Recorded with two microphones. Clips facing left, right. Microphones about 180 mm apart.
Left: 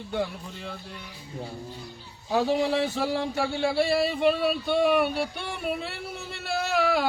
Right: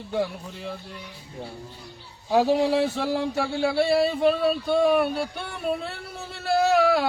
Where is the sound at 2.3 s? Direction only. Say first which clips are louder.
Right 4 dB; 5° right (ahead or behind).